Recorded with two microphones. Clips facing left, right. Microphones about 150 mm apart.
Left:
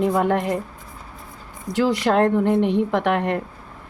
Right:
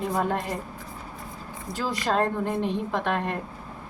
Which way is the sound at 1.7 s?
75° left (ahead or behind).